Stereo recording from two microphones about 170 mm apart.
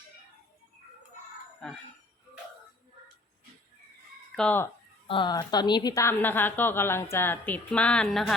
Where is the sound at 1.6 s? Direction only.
5° left (ahead or behind).